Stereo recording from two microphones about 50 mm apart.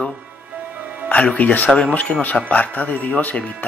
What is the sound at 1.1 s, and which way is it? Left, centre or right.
Speech, left.